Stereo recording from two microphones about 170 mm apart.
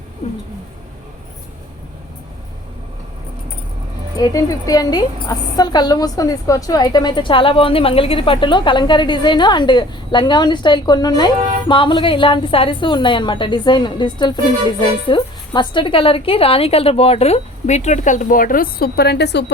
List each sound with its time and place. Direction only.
4.2 s a woman's voice: 20° left (ahead or behind); by 19.5 s 80° left